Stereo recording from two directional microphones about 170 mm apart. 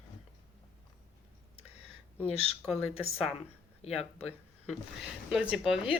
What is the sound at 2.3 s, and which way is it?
Speech, 40° left (ahead or behind).